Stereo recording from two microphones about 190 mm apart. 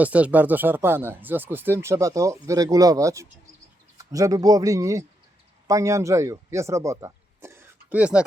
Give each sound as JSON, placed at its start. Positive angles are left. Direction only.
{"t": 0.0, "sound": "speech", "side_deg": -10}